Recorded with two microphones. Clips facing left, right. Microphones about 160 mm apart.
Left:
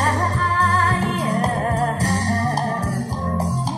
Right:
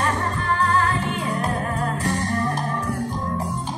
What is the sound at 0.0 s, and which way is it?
Music, 40° left (ahead or behind).